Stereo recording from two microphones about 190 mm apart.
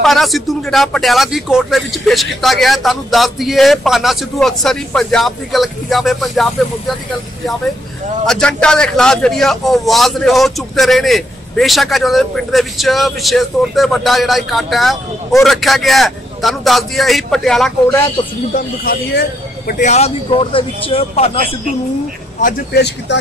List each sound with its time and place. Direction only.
0.0 s a man's voice: centre (ahead or behind)
8.3 s a man's voice: 5° left (ahead or behind)
18.5 s speech: 50° left (ahead or behind)
19.7 s speech: 40° left (ahead or behind)
22.4 s speech: 50° left (ahead or behind)